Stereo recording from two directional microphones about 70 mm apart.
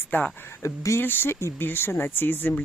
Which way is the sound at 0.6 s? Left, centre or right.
Left.